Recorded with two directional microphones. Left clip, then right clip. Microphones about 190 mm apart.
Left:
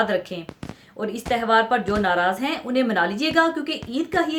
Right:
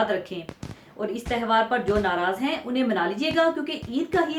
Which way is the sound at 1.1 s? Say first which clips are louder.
Left 4 dB; 55° left (ahead or behind).